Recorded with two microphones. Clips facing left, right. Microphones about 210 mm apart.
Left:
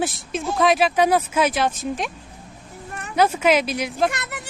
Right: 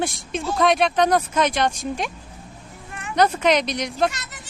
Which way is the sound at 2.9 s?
40° left (ahead or behind).